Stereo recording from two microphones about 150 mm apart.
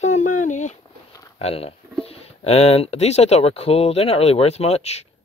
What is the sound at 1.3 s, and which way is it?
Speech, 40° left (ahead or behind).